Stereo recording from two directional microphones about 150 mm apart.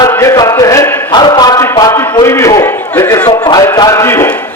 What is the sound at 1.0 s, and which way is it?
A man's voice, 30° left (ahead or behind).